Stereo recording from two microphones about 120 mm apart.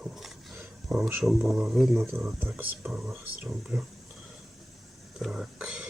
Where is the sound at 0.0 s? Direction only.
Centre (ahead or behind).